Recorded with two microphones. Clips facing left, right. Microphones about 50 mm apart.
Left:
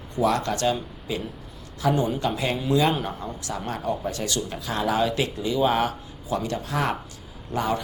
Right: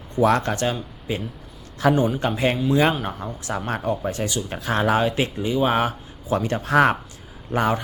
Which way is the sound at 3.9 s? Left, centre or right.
Right.